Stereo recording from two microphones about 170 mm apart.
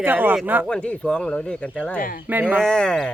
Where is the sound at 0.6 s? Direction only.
5° left (ahead or behind).